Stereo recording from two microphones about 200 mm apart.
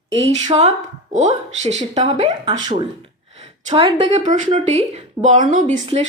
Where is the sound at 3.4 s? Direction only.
30° right (ahead or behind).